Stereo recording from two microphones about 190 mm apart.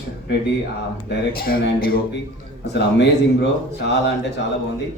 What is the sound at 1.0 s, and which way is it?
Speech, 50° left (ahead or behind).